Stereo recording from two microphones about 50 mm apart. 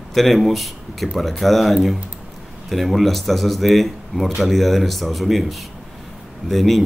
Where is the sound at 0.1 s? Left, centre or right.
Centre.